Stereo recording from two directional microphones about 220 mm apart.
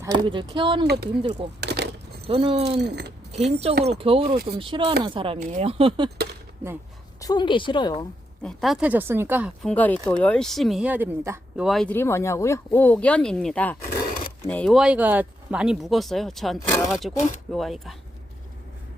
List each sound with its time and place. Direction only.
0.0 s speech: 20° right (ahead or behind)
0.9 s speech: 45° right (ahead or behind)
1.2 s speech: 25° right (ahead or behind)
1.6 s a sound: 50° right (ahead or behind)
2.2 s speech: 25° right (ahead or behind)
2.7 s speech: 50° right (ahead or behind)
3.3 s speech: 30° right (ahead or behind)
7.2 s a woman's voice: 20° left (ahead or behind)
8.4 s speech: centre (ahead or behind)
9.6 s speech: 5° left (ahead or behind)